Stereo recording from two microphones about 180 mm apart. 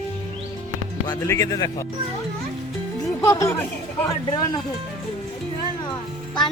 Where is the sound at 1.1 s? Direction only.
15° left (ahead or behind).